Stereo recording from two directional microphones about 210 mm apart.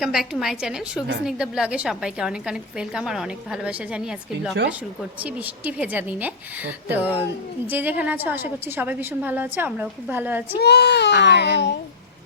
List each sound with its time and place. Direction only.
0.0 s a woman's voice: centre (ahead or behind)
5.2 s a woman's voice: 5° right (ahead or behind)
10.6 s speech: 55° left (ahead or behind)